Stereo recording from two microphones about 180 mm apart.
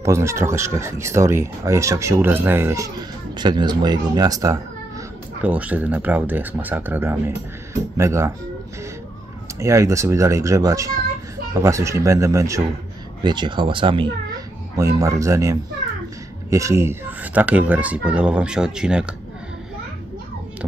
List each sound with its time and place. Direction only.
0.0 s speech: 15° right (ahead or behind)
5.4 s speech: 10° right (ahead or behind)
9.6 s speech: 15° right (ahead or behind)
14.8 s speech: 20° right (ahead or behind)